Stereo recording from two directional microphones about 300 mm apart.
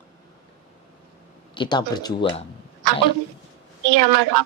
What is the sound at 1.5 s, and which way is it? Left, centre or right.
Speech, centre.